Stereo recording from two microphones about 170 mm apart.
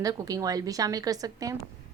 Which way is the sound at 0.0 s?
20° right (ahead or behind).